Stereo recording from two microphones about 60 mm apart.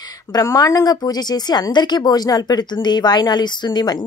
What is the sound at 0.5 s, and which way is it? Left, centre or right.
A woman's voice, left.